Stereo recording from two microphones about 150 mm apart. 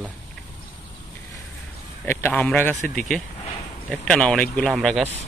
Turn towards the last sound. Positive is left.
turn(degrees=0)  # may be behind; listen again after turning